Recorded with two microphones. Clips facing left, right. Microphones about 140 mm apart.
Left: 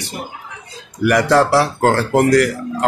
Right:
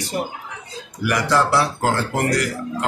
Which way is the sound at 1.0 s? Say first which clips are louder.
Left 6 dB; 60° left (ahead or behind).